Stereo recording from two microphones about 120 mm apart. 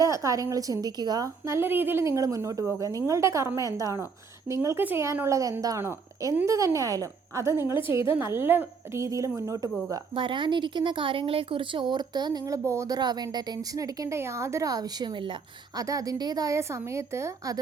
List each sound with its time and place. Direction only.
0.0 s a woman's voice: 25° right (ahead or behind)
9.9 s speech: 40° right (ahead or behind); by 13.0 s 25° right (ahead or behind)
13.0 s speech: 35° right (ahead or behind)
15.8 s a woman's voice: 30° right (ahead or behind)